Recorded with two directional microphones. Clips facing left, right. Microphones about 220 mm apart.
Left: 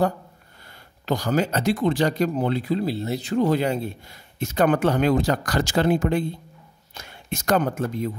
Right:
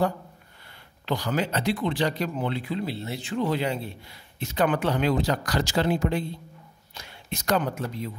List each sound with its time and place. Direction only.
1.0 s speech: 45° left (ahead or behind)